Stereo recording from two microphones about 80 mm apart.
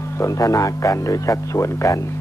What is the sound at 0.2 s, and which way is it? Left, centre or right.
Speech, left.